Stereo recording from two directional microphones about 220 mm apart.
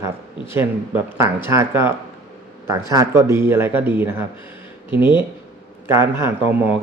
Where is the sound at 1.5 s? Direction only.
10° right (ahead or behind).